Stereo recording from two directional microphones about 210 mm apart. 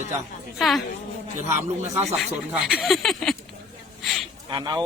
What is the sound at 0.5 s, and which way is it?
Speech, centre (ahead or behind).